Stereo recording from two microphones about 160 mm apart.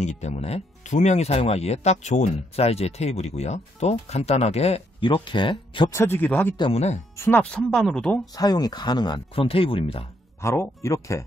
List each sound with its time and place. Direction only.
0.0 s speech: 45° left (ahead or behind)
5.9 s speech: 15° left (ahead or behind)
6.5 s speech: 30° left (ahead or behind)
7.2 s speech: 15° left (ahead or behind)
8.4 s speech: 25° left (ahead or behind)
10.4 s speech: 15° left (ahead or behind)